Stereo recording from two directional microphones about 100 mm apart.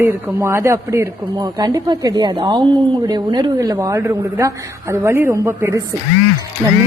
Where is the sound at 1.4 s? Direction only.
45° right (ahead or behind).